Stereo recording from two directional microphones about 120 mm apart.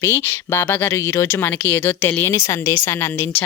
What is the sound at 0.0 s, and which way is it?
A woman's voice, 20° left (ahead or behind).